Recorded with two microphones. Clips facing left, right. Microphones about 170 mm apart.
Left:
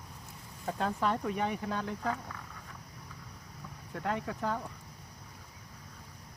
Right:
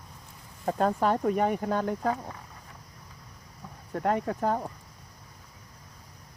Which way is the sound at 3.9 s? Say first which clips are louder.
Right 7 dB; 50° right (ahead or behind).